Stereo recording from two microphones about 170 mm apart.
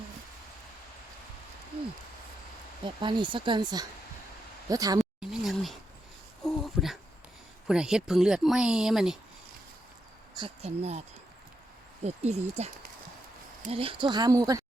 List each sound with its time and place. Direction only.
2.8 s speech: 25° right (ahead or behind)
4.9 s a sound: centre (ahead or behind)
7.7 s speech: 5° right (ahead or behind)
10.3 s speech: 35° right (ahead or behind)
12.0 s speech: 40° right (ahead or behind); by 14.6 s 20° right (ahead or behind)